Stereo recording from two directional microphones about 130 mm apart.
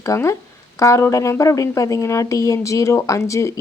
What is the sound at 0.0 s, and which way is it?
Speech, 25° left (ahead or behind).